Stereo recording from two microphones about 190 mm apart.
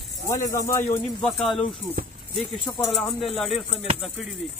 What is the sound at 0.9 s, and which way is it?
Speech, 5° left (ahead or behind).